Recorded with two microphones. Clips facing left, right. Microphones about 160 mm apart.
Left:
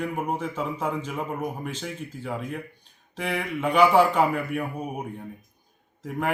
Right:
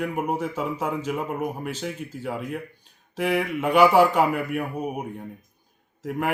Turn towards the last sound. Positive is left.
turn(degrees=-5)  # may be behind; listen again after turning